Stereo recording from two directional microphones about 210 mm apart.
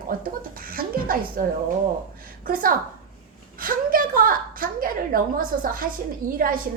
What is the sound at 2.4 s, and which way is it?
Speech, 40° right (ahead or behind).